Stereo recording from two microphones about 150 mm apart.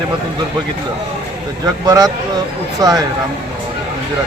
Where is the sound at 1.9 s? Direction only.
25° right (ahead or behind).